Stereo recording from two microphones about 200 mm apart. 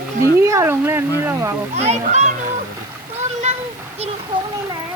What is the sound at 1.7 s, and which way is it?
Speech, 35° right (ahead or behind).